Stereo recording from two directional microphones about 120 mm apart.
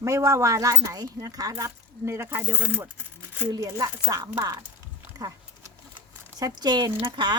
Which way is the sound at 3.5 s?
30° right (ahead or behind).